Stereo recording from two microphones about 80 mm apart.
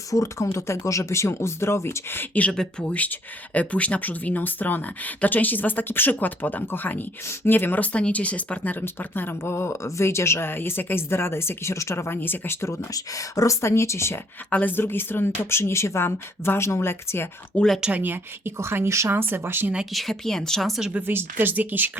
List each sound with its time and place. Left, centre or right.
0.1 s speech: left
2.5 s speech: centre; by 12.8 s left
12.9 s speech: left
14.5 s speech: left
17.7 s speech: centre
18.0 s speech: right
19.7 s a woman's voice: centre
20.9 s speech: right